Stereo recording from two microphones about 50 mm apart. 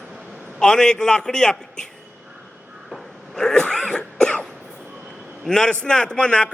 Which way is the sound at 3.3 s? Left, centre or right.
Centre.